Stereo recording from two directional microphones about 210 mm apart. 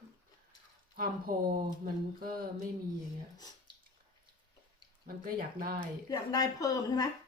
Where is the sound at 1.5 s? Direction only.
40° right (ahead or behind).